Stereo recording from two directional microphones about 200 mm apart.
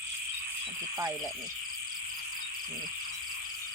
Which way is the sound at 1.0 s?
15° right (ahead or behind).